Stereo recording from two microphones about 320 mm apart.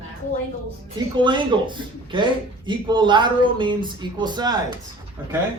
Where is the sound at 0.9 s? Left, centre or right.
Centre.